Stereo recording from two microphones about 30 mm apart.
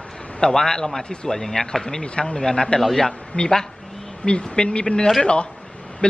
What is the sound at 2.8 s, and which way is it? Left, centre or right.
Speech, centre.